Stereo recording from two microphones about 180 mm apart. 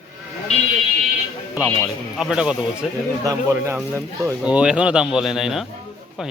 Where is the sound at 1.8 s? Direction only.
5° right (ahead or behind).